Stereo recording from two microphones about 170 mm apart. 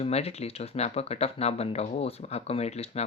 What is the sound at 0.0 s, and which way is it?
Speech, 40° left (ahead or behind).